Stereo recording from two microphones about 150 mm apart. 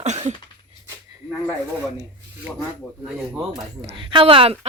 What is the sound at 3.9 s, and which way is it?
Speech, 35° right (ahead or behind).